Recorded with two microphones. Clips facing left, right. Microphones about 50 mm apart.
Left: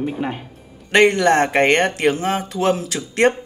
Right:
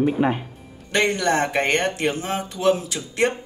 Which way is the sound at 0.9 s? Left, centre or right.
Left.